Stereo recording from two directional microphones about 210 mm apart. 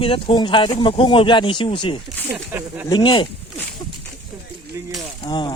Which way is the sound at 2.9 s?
20° left (ahead or behind).